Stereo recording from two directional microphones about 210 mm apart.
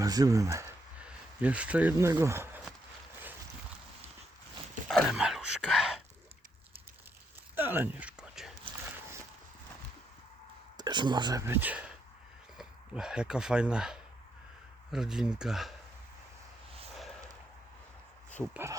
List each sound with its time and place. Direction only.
0.0 s speech: 15° right (ahead or behind)
4.9 s speech: centre (ahead or behind)
7.5 s a sound: 10° right (ahead or behind)
10.8 s speech: 20° right (ahead or behind); by 15.7 s centre (ahead or behind)
18.5 s speech: 10° right (ahead or behind)